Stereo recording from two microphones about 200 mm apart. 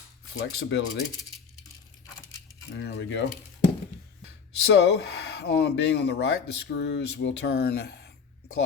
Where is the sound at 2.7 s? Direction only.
60° left (ahead or behind).